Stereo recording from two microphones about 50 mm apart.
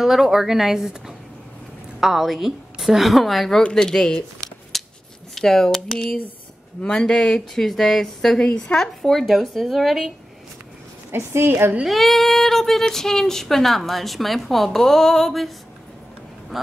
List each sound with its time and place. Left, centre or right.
0.0 s a woman's voice: centre
5.3 s a woman's voice: centre
11.1 s a woman's voice: right
11.9 s speech: centre